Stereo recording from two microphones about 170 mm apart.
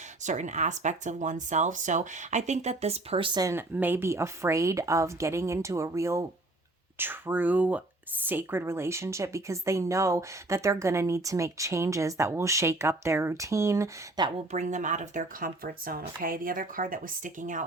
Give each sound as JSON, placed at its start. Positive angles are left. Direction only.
{"t": 0.2, "sound": "speech", "side_deg": -45}
{"t": 14.3, "sound": "speech", "side_deg": -40}